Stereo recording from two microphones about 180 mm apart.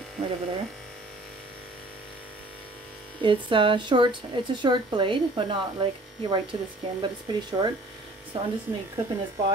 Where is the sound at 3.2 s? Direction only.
30° right (ahead or behind).